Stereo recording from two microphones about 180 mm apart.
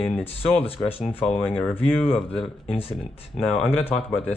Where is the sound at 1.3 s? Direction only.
10° left (ahead or behind).